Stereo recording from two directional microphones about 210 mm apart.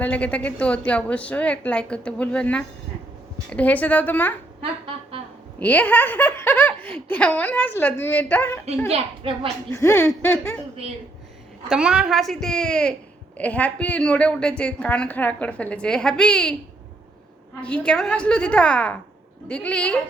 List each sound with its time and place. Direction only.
0.0 s a woman's voice: 5° left (ahead or behind)
5.5 s a woman's voice: 5° left (ahead or behind)
8.9 s a woman's voice: 25° right (ahead or behind)
9.7 s a woman's voice: 10° left (ahead or behind)
11.7 s a woman's voice: 5° right (ahead or behind)
17.6 s a woman's voice: 5° left (ahead or behind)